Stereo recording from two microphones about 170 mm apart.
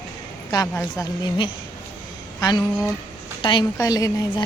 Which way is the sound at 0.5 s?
20° left (ahead or behind).